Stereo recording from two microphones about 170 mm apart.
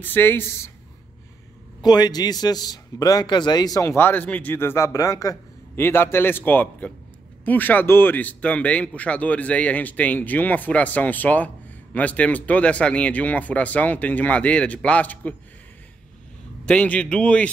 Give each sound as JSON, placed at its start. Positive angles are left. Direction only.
{"t": 0.0, "sound": "speech", "side_deg": 10}
{"t": 1.8, "sound": "a man's voice", "side_deg": 25}
{"t": 16.6, "sound": "speech", "side_deg": 5}